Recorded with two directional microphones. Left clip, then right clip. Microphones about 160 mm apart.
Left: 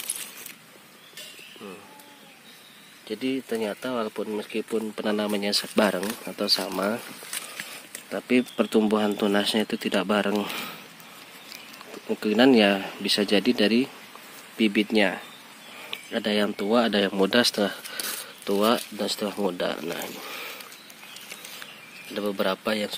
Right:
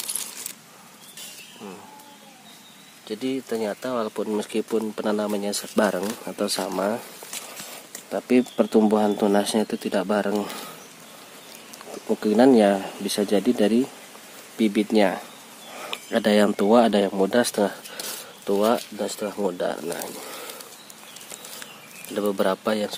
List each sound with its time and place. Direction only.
3.1 s speech: centre (ahead or behind)
4.3 s speech: 10° right (ahead or behind)
8.1 s speech: centre (ahead or behind)
12.1 s speech: 5° right (ahead or behind)
16.1 s speech: 15° right (ahead or behind)
17.1 s speech: 15° left (ahead or behind)
17.4 s speech: centre (ahead or behind)
22.1 s speech: 5° right (ahead or behind)